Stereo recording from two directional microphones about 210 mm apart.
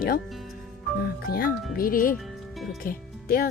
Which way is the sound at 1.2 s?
45° left (ahead or behind).